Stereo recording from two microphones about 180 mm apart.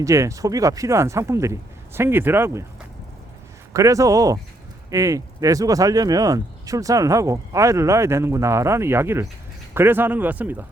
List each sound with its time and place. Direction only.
0.0 s speech: 15° right (ahead or behind)
3.7 s speech: 15° right (ahead or behind)